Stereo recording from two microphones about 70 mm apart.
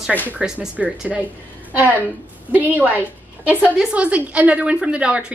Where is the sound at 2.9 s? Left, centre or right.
Right.